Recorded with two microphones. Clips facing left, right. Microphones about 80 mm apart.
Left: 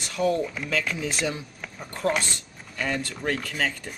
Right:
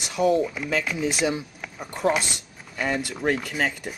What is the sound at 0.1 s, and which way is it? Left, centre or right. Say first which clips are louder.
Speech: right 3 dB; centre.